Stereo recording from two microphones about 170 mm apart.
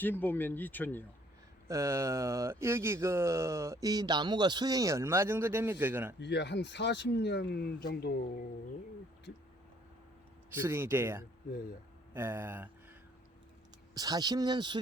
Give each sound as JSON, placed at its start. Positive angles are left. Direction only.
{"t": 0.0, "sound": "speech", "side_deg": 10}
{"t": 1.6, "sound": "speech", "side_deg": -20}
{"t": 6.1, "sound": "speech", "side_deg": 90}
{"t": 10.5, "sound": "speech", "side_deg": -15}
{"t": 13.9, "sound": "speech", "side_deg": -25}